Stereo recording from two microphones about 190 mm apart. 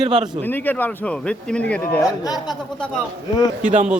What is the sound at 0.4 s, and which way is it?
A man's voice, 10° left (ahead or behind).